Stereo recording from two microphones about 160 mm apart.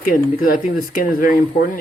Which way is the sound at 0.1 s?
65° left (ahead or behind).